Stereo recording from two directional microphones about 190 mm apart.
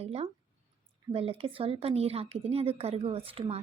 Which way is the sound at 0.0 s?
30° right (ahead or behind).